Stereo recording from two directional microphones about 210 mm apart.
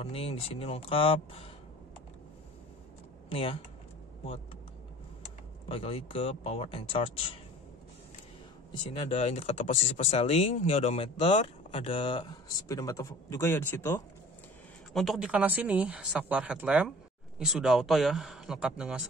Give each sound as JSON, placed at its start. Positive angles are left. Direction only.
{"t": 0.0, "sound": "speech", "side_deg": 30}
{"t": 3.3, "sound": "speech", "side_deg": 25}
{"t": 5.7, "sound": "speech", "side_deg": 25}
{"t": 8.9, "sound": "speech", "side_deg": 30}
{"t": 15.0, "sound": "speech", "side_deg": 0}